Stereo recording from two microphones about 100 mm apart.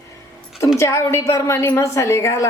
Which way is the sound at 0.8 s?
25° left (ahead or behind).